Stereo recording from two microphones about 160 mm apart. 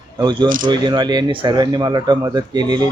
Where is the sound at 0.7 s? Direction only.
30° right (ahead or behind).